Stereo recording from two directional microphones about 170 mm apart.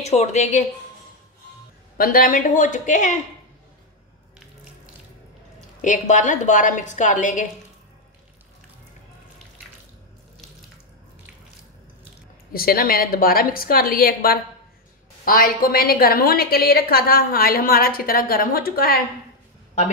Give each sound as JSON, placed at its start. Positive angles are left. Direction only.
{"t": 0.0, "sound": "a woman's voice", "side_deg": 40}
{"t": 2.0, "sound": "a woman's voice", "side_deg": 55}
{"t": 5.8, "sound": "a woman's voice", "side_deg": 50}
{"t": 12.5, "sound": "a woman's voice", "side_deg": 60}